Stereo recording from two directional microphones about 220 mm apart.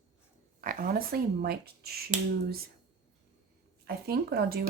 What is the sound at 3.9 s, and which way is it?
Speech, 45° right (ahead or behind).